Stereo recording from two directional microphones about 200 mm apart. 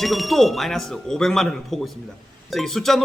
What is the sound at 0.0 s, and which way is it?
A man's voice, centre (ahead or behind).